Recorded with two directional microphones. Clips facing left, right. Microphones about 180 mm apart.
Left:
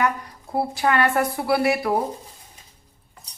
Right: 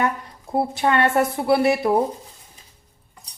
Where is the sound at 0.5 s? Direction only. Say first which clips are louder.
Right 1 dB; 20° right (ahead or behind).